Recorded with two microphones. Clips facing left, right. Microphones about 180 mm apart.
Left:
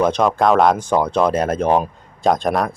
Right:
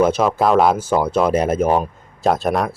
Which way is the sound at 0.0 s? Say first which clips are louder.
Even; 5° right (ahead or behind).